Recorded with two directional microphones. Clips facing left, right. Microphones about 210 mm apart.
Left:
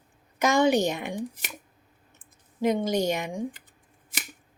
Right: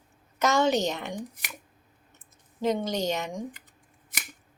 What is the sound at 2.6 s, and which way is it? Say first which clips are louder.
Speech: left 3 dB; 10° left (ahead or behind).